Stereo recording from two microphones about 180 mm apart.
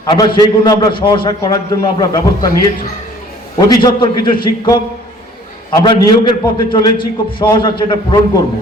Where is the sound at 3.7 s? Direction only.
25° left (ahead or behind).